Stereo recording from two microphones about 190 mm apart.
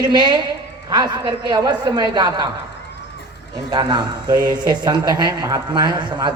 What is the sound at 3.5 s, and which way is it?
Speech, 20° right (ahead or behind).